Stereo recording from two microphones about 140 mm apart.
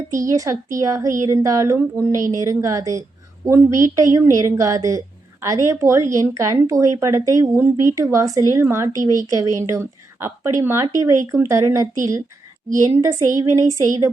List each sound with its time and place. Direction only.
0.1 s speech: 25° right (ahead or behind)
13.0 s speech: 20° right (ahead or behind)